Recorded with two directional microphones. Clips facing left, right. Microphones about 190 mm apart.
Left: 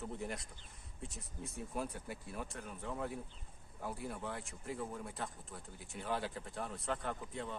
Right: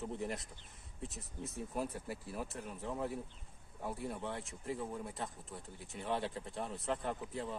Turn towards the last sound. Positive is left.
turn(degrees=-5)  # may be behind; listen again after turning